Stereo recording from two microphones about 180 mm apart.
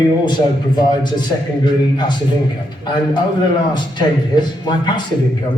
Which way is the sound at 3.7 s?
25° left (ahead or behind).